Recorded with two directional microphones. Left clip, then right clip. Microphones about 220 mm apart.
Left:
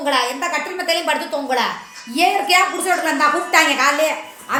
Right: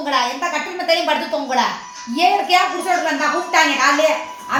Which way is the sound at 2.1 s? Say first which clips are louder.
Right 1 dB; 45° left (ahead or behind).